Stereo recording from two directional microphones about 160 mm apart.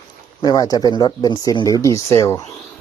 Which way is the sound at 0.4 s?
25° left (ahead or behind).